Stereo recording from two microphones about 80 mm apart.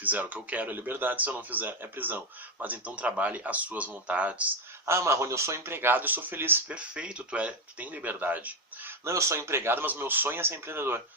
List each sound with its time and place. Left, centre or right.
0.0 s speech: right
4.9 s speech: right
6.7 s speech: centre
9.0 s speech: right